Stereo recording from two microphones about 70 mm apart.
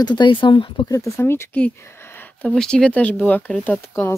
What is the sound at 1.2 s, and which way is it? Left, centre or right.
Speech, left.